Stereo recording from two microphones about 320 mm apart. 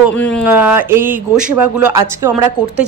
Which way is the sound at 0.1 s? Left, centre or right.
Centre.